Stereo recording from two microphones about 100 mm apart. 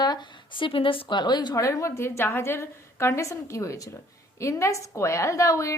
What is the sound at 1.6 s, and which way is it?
A woman's voice, 30° left (ahead or behind).